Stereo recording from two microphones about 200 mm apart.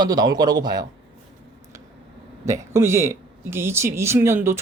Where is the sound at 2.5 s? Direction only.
15° right (ahead or behind).